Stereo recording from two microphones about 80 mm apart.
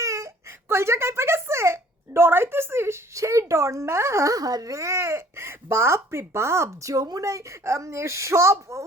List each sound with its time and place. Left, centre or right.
0.0 s whimper: right
0.7 s a woman's voice: right